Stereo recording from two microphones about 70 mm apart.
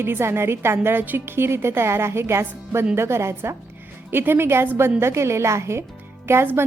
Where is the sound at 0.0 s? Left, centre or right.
Right.